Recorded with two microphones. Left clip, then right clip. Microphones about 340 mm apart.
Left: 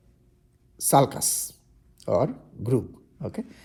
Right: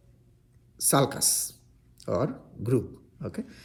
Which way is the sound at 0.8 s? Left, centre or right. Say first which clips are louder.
Left 4 dB; centre.